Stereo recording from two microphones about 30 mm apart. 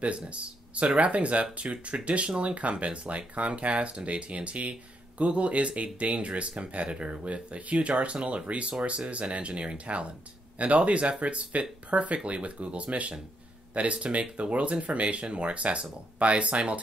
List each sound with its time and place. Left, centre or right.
0.0 s speech: right